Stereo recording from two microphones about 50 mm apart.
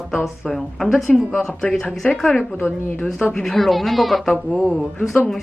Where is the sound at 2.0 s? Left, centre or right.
Left.